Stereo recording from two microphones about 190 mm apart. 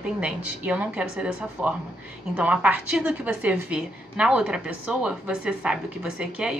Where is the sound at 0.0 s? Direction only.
5° right (ahead or behind).